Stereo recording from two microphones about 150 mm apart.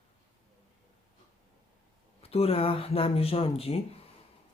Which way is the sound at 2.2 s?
40° left (ahead or behind).